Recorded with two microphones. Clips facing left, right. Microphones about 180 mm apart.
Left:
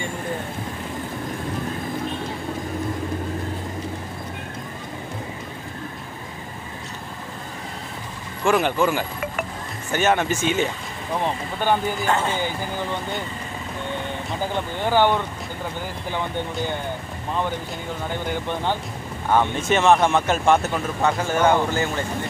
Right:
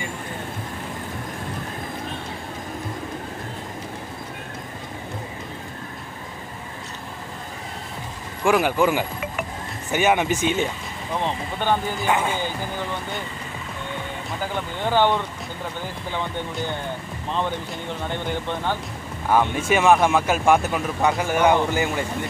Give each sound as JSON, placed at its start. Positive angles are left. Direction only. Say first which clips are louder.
{"t": 8.5, "sound": "speech", "louder": "right 1 dB", "side_deg": -10}
{"t": 11.1, "sound": "speech", "louder": "left 1 dB", "side_deg": 10}
{"t": 12.1, "sound": "speech", "louder": "right 1 dB", "side_deg": -10}
{"t": 14.9, "sound": "speech", "louder": "left 1 dB", "side_deg": 10}
{"t": 18.0, "sound": "speech", "louder": "left 1 dB", "side_deg": 15}
{"t": 19.5, "sound": "speech", "louder": "even", "side_deg": -10}